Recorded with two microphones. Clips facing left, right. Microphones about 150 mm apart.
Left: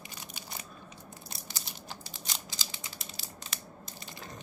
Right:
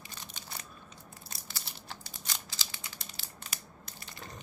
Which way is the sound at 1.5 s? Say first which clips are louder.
Even; 15° left (ahead or behind).